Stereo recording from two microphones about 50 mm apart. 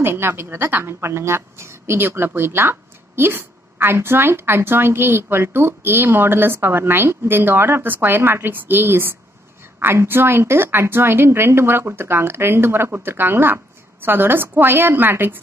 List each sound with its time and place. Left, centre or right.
0.0 s speech: right
1.0 s speech: right